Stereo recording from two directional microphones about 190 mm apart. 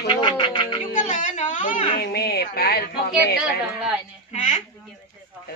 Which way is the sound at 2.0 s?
60° left (ahead or behind).